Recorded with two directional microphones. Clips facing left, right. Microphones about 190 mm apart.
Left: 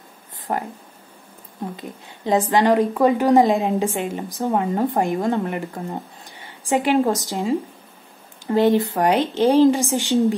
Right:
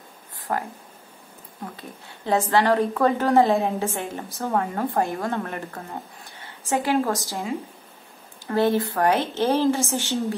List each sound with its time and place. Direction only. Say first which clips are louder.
0.5 s speech: left 2 dB; 20° left (ahead or behind)
1.8 s a woman's voice: left 5 dB; 15° left (ahead or behind)
8.5 s a woman's voice: left 4 dB; 20° left (ahead or behind)